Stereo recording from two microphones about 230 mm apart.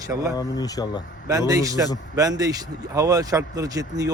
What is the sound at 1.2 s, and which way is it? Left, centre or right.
Speech, centre.